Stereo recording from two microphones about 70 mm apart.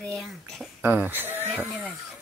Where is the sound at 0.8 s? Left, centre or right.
Right.